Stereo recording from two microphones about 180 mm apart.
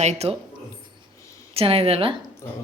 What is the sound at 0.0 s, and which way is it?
Speech, 35° right (ahead or behind).